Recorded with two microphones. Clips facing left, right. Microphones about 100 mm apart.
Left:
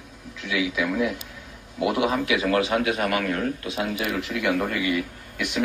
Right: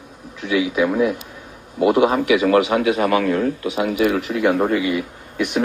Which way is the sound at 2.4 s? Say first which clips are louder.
Right 5 dB; 20° right (ahead or behind).